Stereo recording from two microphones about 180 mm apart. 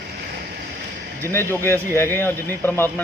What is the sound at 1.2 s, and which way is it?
A man's voice, 15° left (ahead or behind).